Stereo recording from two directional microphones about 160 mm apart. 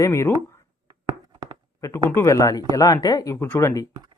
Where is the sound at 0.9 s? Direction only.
25° right (ahead or behind).